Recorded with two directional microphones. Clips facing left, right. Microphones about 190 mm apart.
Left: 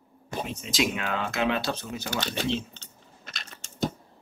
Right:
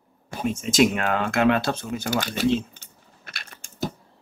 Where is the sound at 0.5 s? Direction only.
45° right (ahead or behind).